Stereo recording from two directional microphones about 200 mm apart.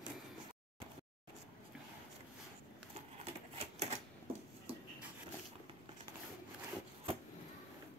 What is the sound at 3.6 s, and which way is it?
Typewriter, 30° right (ahead or behind).